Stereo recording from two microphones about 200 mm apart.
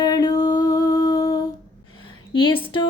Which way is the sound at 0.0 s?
20° left (ahead or behind).